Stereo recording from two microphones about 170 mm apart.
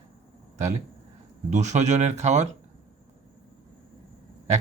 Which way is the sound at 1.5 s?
45° right (ahead or behind).